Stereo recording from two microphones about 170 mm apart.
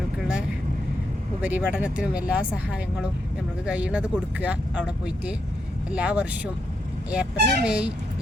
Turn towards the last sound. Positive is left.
turn(degrees=-5)  # may be behind; listen again after turning